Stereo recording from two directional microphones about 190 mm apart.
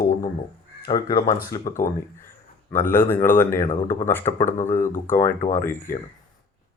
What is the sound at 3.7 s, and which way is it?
Speech, 40° left (ahead or behind).